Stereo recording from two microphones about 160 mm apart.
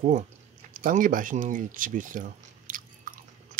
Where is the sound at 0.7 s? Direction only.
55° right (ahead or behind).